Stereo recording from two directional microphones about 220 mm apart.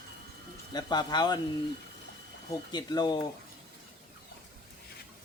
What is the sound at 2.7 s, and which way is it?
Speech, 20° left (ahead or behind).